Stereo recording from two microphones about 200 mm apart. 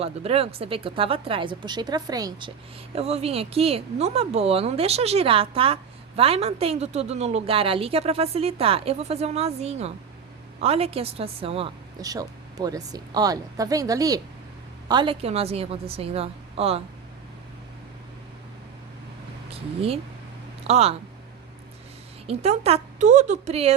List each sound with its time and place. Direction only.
0.0 s speech: 30° right (ahead or behind)
2.9 s speech: 30° right (ahead or behind)
20.7 s a woman's voice: 30° right (ahead or behind)
22.3 s a woman's voice: 30° right (ahead or behind)